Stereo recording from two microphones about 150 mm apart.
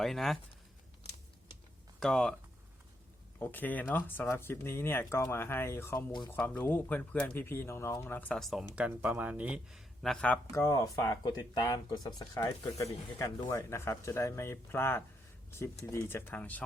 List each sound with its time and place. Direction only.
0.0 s speech: centre (ahead or behind)
2.0 s speech: 5° left (ahead or behind)
3.4 s speech: 10° left (ahead or behind)
6.1 s speech: 30° left (ahead or behind)
6.3 s speech: 10° left (ahead or behind)
8.7 s speech: 10° right (ahead or behind); by 10.4 s 5° left (ahead or behind)
10.5 s speech: 20° left (ahead or behind)